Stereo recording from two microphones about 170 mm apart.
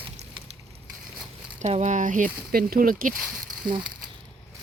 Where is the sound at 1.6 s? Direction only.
45° right (ahead or behind).